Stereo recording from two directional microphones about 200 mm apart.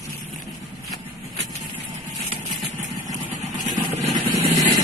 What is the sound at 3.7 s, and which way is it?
Vehicle, 35° right (ahead or behind).